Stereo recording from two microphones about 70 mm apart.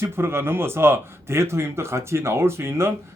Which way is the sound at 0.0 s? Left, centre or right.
Right.